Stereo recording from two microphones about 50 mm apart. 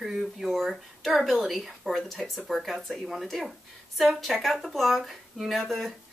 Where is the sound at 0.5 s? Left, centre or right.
Centre.